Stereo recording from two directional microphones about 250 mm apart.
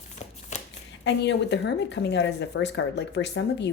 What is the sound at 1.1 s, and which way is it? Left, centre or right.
Speech, left.